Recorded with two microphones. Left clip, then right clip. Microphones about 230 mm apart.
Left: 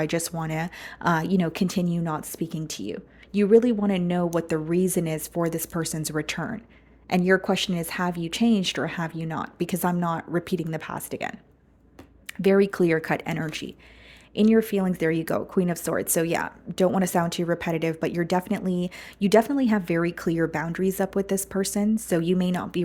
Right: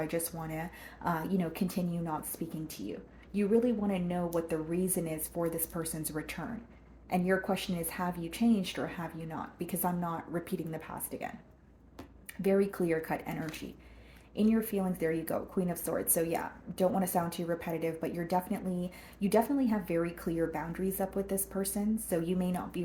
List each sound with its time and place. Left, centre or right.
0.0 s speech: left